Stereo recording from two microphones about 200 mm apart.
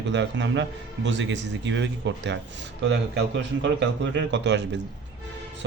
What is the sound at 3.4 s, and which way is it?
A man's voice, 65° right (ahead or behind).